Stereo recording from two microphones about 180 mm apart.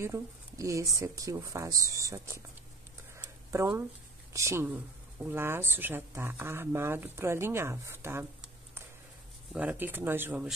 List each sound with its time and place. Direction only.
0.0 s speech: 15° right (ahead or behind)
3.2 s a sound: 15° right (ahead or behind)
4.3 s speech: 15° right (ahead or behind)